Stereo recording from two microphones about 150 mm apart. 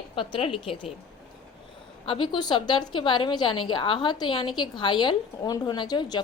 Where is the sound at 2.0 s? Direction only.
35° left (ahead or behind).